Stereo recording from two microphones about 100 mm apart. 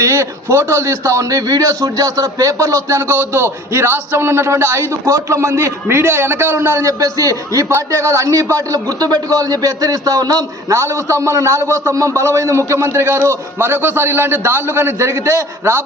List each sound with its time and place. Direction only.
0.0 s speech: 30° right (ahead or behind)